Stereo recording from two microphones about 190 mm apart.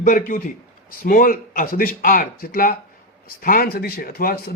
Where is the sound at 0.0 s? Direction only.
45° left (ahead or behind).